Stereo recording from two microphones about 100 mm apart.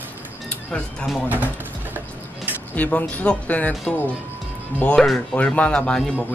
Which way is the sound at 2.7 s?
15° left (ahead or behind).